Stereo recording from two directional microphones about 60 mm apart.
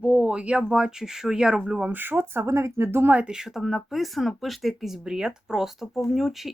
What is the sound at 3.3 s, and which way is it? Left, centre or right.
Speech, centre.